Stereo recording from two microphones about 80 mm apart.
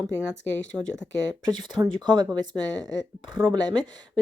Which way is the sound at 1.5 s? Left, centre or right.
Right.